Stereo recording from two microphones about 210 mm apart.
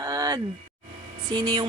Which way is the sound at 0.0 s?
20° right (ahead or behind).